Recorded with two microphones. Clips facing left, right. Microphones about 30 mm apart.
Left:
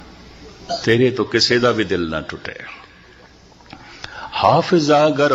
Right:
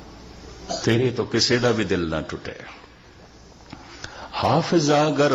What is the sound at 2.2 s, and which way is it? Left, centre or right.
Speech, left.